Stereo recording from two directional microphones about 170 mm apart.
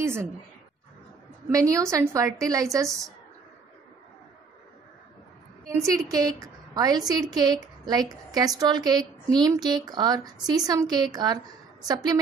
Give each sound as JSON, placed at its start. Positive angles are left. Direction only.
{"t": 0.0, "sound": "a sound", "side_deg": -15}
{"t": 1.5, "sound": "a woman's voice", "side_deg": -20}
{"t": 5.8, "sound": "a woman's voice", "side_deg": -20}